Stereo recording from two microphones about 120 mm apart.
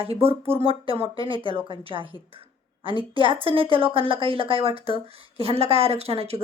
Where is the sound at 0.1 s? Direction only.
55° right (ahead or behind).